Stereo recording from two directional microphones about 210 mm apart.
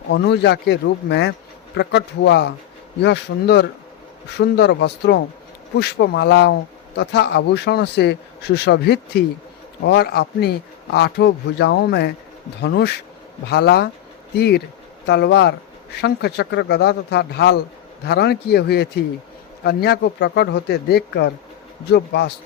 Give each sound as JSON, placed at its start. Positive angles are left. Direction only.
{"t": 0.1, "sound": "speech", "side_deg": 55}